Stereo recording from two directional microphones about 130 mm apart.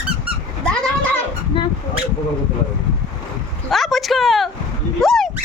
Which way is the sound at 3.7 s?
Centre (ahead or behind).